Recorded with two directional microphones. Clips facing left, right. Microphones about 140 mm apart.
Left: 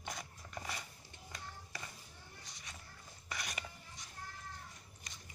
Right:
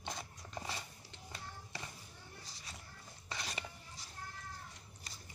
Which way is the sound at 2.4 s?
30° right (ahead or behind).